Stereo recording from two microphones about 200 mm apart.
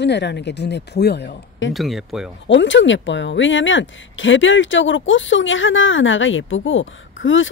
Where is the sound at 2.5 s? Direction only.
65° left (ahead or behind).